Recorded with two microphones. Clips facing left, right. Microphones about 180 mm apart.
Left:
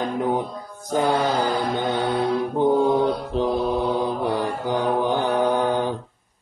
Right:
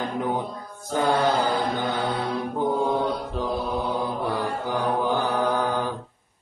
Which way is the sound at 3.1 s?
25° left (ahead or behind).